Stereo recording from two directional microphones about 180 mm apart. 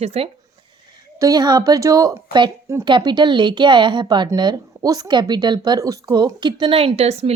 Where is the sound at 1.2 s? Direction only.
20° right (ahead or behind).